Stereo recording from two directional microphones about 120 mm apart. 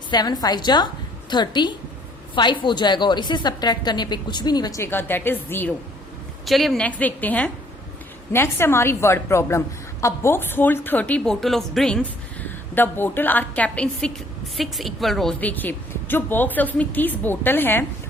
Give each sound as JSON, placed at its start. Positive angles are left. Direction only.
{"t": 0.1, "sound": "a woman's voice", "side_deg": 35}
{"t": 4.8, "sound": "a woman's voice", "side_deg": 20}
{"t": 6.4, "sound": "a woman's voice", "side_deg": 0}
{"t": 6.8, "sound": "a woman's voice", "side_deg": 15}
{"t": 12.4, "sound": "a woman's voice", "side_deg": 15}